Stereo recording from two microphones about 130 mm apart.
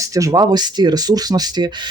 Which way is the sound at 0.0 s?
25° right (ahead or behind).